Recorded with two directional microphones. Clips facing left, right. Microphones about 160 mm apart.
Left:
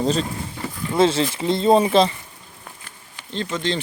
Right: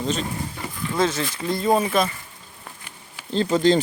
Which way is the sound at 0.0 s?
35° left (ahead or behind).